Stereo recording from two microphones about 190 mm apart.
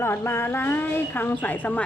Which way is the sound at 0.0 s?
15° left (ahead or behind).